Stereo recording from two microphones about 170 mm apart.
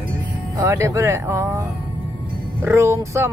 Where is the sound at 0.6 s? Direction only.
15° right (ahead or behind).